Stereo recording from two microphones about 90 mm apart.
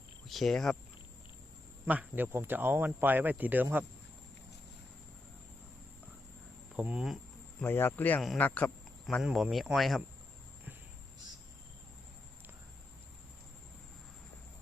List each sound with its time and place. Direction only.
0.3 s speech: centre (ahead or behind)
1.9 s speech: 20° right (ahead or behind)
6.7 s speech: 10° right (ahead or behind)
7.6 s speech: 25° left (ahead or behind)
9.2 s speech: centre (ahead or behind)